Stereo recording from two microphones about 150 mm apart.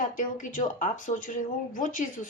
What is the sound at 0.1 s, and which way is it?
Speech, 60° left (ahead or behind).